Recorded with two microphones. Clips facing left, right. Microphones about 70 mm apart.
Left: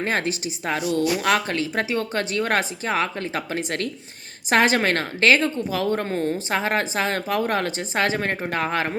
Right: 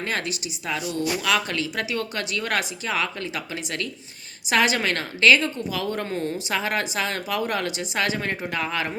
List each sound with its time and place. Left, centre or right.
0.0 s a woman's voice: left